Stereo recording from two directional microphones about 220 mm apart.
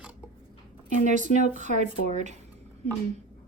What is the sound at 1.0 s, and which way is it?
A woman's voice, 35° right (ahead or behind).